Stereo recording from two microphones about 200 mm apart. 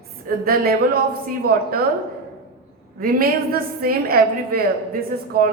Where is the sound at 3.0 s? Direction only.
50° right (ahead or behind).